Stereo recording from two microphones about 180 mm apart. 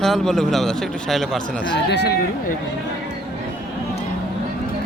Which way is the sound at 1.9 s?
65° left (ahead or behind).